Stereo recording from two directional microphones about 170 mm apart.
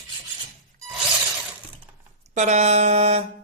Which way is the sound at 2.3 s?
40° right (ahead or behind).